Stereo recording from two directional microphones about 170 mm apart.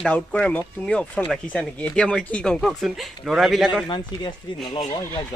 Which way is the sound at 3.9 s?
25° left (ahead or behind).